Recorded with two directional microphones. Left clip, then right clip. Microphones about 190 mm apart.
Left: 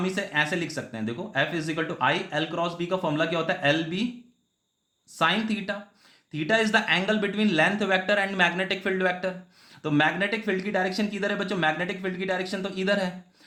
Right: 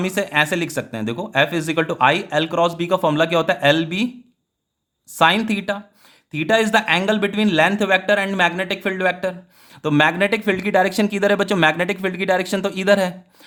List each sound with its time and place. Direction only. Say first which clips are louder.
0.0 s speech: right 7 dB; 50° right (ahead or behind)
5.1 s speech: right 8 dB; 45° right (ahead or behind)